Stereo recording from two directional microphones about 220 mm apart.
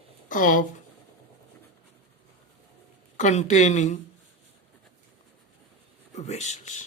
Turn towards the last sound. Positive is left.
turn(degrees=30)  # may be behind; listen again after turning